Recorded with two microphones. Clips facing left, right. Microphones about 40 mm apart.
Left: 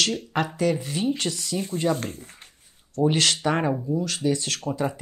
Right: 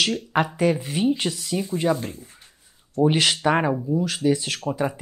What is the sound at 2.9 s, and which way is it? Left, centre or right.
Speech, centre.